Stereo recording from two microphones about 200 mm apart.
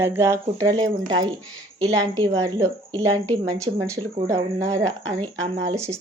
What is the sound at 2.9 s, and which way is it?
Speech, 10° left (ahead or behind).